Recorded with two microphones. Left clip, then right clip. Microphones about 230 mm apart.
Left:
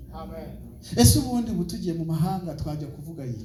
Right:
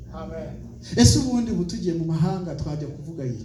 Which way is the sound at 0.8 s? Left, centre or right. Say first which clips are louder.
Right 2 dB; left.